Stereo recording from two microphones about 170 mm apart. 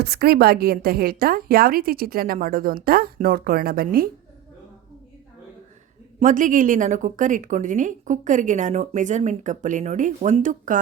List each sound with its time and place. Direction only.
0.0 s a woman's voice: 70° right (ahead or behind)
6.1 s a woman's voice: 50° right (ahead or behind)